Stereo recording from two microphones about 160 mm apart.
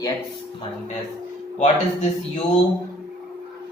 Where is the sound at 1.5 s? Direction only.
45° left (ahead or behind).